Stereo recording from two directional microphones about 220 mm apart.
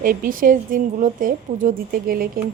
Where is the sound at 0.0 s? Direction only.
40° right (ahead or behind).